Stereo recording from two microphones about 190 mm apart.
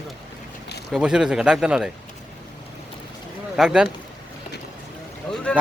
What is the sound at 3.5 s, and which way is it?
Speech, 5° right (ahead or behind).